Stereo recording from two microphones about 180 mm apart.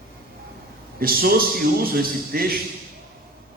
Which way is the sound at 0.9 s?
55° right (ahead or behind).